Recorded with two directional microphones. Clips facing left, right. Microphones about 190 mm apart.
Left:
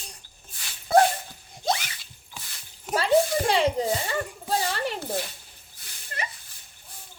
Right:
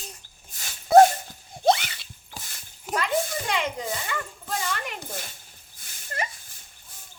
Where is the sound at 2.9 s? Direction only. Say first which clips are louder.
Left 5 dB; 30° left (ahead or behind).